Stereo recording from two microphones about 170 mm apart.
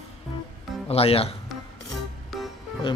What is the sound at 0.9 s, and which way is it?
Speech, 35° left (ahead or behind).